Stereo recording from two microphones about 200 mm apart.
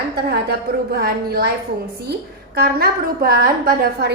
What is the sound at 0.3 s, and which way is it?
A woman's voice, 50° right (ahead or behind).